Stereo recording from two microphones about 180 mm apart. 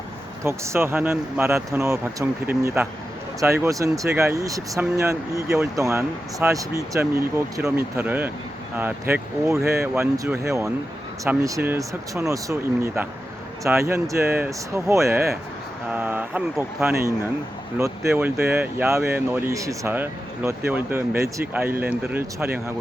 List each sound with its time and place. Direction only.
0.4 s speech: 15° right (ahead or behind)